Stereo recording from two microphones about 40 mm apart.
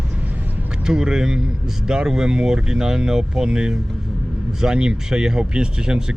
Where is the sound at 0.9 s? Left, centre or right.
Centre.